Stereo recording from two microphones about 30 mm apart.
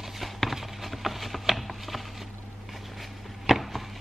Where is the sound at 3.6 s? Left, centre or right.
Centre.